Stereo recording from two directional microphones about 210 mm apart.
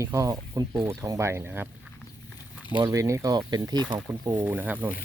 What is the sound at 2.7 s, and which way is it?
Speech, 15° right (ahead or behind).